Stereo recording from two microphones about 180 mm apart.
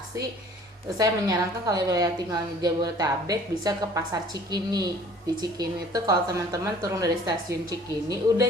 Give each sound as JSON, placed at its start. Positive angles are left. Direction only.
{"t": 0.9, "sound": "a woman's voice", "side_deg": -20}